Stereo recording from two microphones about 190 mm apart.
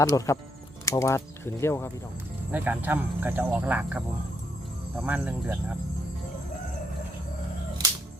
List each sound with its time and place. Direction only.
0.0 s speech: 15° left (ahead or behind)
2.5 s speech: 10° right (ahead or behind)